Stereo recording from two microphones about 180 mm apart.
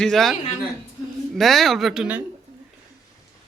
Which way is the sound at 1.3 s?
Centre (ahead or behind).